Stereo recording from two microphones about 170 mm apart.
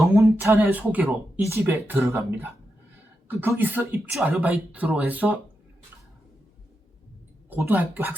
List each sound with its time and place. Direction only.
0.2 s speech: 15° right (ahead or behind)
7.5 s speech: 10° right (ahead or behind)